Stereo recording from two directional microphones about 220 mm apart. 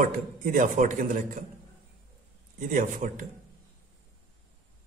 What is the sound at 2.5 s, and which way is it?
Speech, 35° right (ahead or behind).